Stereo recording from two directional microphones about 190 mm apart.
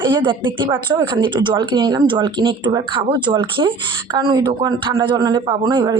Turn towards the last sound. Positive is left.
turn(degrees=-20)  # may be behind; listen again after turning